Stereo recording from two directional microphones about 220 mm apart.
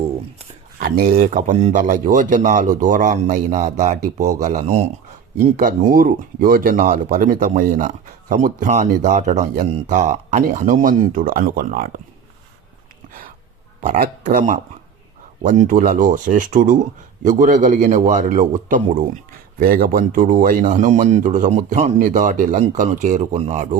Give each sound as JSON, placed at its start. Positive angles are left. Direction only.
{"t": 0.8, "sound": "speech", "side_deg": -40}
{"t": 5.9, "sound": "speech", "side_deg": -40}
{"t": 13.8, "sound": "speech", "side_deg": -40}